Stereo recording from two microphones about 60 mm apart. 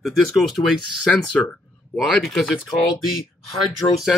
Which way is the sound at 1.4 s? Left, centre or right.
Left.